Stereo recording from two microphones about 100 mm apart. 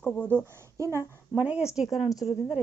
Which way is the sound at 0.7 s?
30° right (ahead or behind).